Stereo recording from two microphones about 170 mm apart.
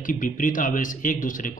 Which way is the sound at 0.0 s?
50° left (ahead or behind).